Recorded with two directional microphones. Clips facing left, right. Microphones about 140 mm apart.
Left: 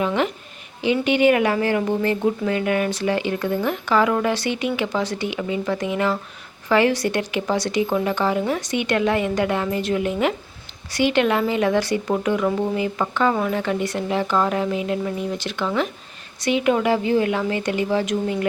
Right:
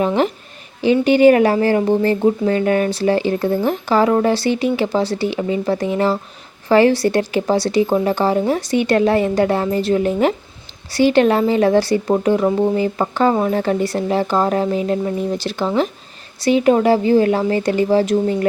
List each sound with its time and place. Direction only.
0.0 s a woman's voice: 35° right (ahead or behind)